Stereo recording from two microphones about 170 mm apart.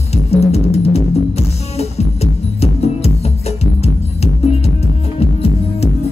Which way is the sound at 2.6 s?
35° left (ahead or behind).